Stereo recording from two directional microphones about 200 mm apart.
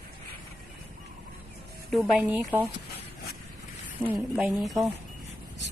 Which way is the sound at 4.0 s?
10° right (ahead or behind).